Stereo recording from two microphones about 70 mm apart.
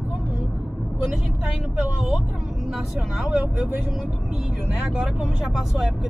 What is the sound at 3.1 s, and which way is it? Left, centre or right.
Speech, centre.